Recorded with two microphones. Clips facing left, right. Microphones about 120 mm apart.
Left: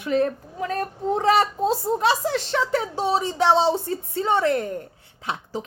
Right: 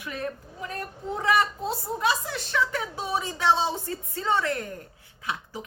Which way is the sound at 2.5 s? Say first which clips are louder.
Left 5 dB; 25° left (ahead or behind).